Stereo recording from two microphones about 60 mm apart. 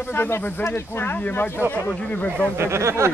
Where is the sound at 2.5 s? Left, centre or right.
Right.